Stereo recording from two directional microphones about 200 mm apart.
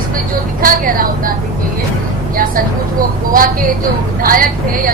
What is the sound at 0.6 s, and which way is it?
Speech, 45° right (ahead or behind).